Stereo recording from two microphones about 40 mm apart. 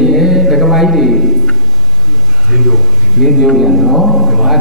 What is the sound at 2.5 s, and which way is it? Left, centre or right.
Speech, centre.